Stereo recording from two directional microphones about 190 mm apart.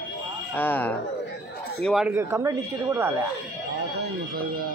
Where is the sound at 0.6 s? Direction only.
10° left (ahead or behind); by 3.1 s 15° right (ahead or behind).